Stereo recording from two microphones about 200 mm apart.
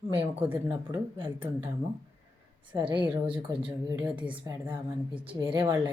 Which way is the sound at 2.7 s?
25° right (ahead or behind).